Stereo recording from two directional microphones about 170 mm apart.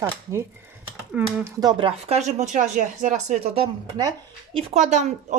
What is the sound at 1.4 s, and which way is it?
Speech, 25° right (ahead or behind).